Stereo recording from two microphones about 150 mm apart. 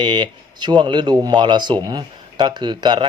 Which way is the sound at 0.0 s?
30° right (ahead or behind).